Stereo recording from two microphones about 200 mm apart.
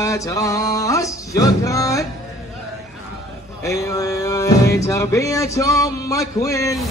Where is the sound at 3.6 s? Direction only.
15° left (ahead or behind).